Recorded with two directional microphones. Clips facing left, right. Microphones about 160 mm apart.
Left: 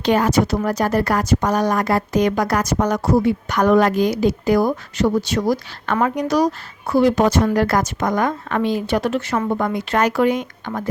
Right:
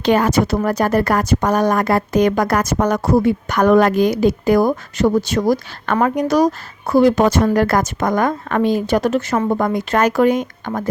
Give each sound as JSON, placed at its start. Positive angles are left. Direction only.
{"t": 0.0, "sound": "speech", "side_deg": -60}